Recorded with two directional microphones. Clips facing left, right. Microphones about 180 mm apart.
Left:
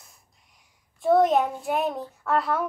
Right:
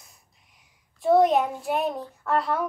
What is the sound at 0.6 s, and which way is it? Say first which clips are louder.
A child's voice: even; centre (ahead or behind).